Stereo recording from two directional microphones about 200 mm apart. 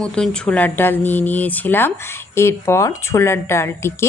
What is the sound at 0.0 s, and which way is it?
Speech, 5° left (ahead or behind).